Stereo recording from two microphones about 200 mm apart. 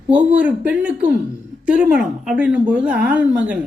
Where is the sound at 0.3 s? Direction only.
5° right (ahead or behind).